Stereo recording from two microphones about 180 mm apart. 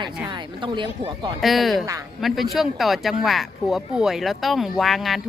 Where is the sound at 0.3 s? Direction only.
25° right (ahead or behind).